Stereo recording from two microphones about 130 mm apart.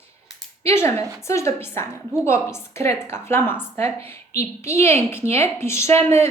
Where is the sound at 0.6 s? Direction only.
20° left (ahead or behind).